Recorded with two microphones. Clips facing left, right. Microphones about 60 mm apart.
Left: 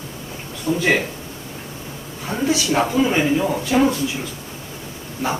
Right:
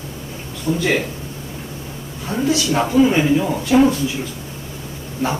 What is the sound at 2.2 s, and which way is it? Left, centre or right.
Speech, left.